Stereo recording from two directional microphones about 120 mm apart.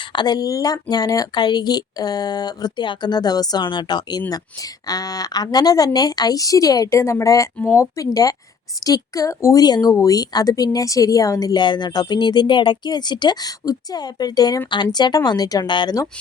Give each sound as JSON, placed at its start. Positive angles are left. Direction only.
{"t": 0.1, "sound": "speech", "side_deg": 35}